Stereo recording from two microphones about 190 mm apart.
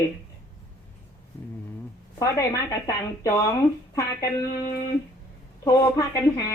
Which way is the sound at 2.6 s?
20° left (ahead or behind).